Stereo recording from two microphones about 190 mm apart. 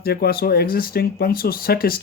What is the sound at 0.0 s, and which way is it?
Speech, 55° left (ahead or behind).